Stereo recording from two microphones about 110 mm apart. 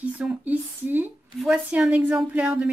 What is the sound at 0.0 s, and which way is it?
A woman's voice, 15° right (ahead or behind).